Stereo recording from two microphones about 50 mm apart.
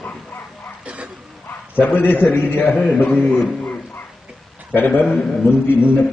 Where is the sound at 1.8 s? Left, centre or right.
Left.